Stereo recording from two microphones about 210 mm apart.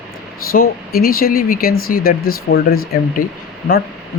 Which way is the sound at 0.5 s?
45° left (ahead or behind).